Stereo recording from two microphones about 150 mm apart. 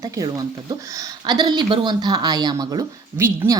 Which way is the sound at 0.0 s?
25° right (ahead or behind).